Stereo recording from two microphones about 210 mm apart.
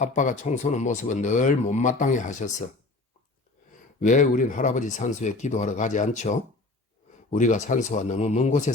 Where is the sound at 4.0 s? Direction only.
35° left (ahead or behind).